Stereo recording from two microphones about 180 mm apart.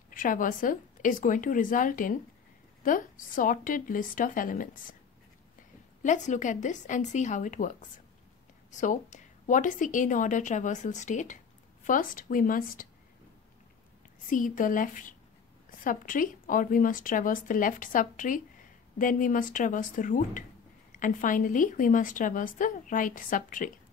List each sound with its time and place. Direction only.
0.1 s a woman's voice: 50° left (ahead or behind)
6.0 s a woman's voice: 40° left (ahead or behind)
8.7 s a woman's voice: 45° left (ahead or behind)
14.3 s a woman's voice: 45° left (ahead or behind)